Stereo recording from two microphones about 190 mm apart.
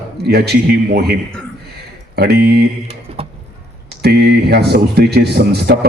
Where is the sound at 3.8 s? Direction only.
60° right (ahead or behind).